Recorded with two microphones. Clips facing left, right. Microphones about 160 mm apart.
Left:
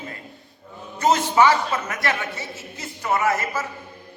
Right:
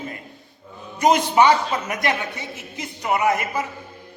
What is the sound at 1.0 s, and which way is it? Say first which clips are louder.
A man's voice: right 1 dB; 15° right (ahead or behind).